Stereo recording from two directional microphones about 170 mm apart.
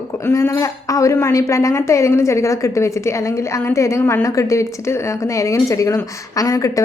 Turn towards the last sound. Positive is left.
turn(degrees=20)  # may be behind; listen again after turning